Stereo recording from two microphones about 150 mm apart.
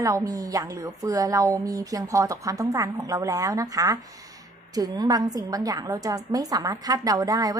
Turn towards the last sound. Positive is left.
turn(degrees=-25)  # may be behind; listen again after turning